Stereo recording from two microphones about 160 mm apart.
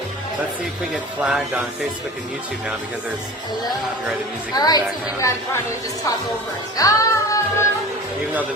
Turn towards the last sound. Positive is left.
turn(degrees=20)  # may be behind; listen again after turning